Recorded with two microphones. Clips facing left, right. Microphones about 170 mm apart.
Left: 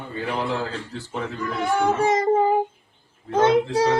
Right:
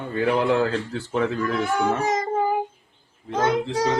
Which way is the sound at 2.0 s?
25° left (ahead or behind).